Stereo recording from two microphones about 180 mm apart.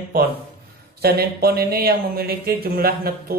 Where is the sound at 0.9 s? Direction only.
60° right (ahead or behind).